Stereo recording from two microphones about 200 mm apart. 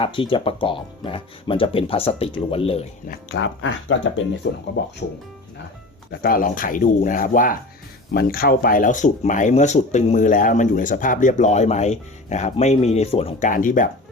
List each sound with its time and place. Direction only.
0.0 s speech: 25° left (ahead or behind)
3.1 s speech: 60° left (ahead or behind)
6.2 s speech: 45° left (ahead or behind)